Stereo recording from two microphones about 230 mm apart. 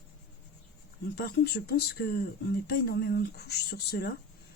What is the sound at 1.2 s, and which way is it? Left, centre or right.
Speech, left.